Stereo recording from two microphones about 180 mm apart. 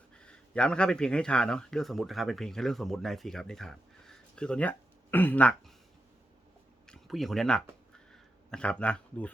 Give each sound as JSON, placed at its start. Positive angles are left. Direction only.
{"t": 0.2, "sound": "speech", "side_deg": 5}
{"t": 6.8, "sound": "speech", "side_deg": 0}